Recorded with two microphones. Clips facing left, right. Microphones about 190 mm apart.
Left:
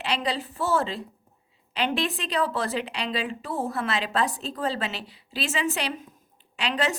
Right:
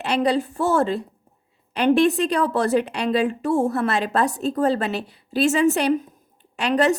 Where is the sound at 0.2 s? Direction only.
50° right (ahead or behind).